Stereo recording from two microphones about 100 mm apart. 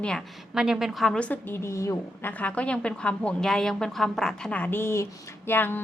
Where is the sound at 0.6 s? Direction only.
5° right (ahead or behind).